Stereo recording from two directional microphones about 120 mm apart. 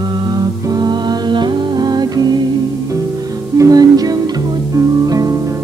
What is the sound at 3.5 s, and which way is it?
Music, 30° right (ahead or behind).